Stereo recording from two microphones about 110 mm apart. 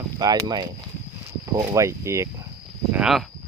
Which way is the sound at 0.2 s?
35° right (ahead or behind).